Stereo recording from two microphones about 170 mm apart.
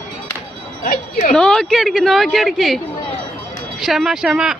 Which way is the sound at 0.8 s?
55° left (ahead or behind).